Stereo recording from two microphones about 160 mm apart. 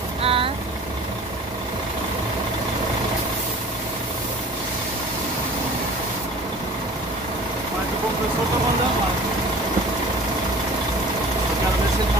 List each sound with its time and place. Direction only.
0.2 s vehicle: 35° right (ahead or behind)